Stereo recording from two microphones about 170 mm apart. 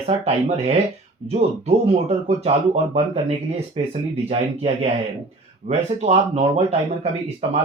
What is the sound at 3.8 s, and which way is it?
Speech, 35° right (ahead or behind).